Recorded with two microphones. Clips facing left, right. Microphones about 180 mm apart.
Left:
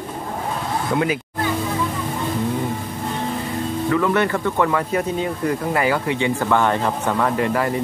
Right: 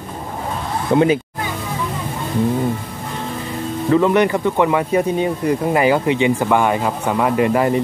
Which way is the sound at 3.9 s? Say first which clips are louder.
Right 6 dB; 20° right (ahead or behind).